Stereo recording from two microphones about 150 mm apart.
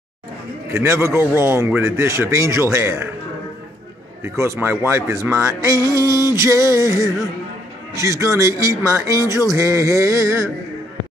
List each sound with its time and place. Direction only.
0.7 s a man's voice: 15° right (ahead or behind)
4.2 s speech: 15° right (ahead or behind)